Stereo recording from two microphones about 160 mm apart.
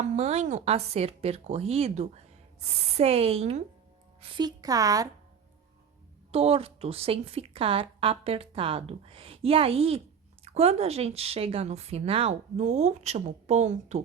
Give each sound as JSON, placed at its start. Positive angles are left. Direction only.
{"t": 0.0, "sound": "a woman's voice", "side_deg": -45}
{"t": 6.3, "sound": "a woman's voice", "side_deg": -40}